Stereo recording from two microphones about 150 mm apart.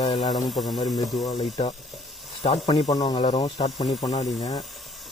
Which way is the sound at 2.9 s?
25° left (ahead or behind).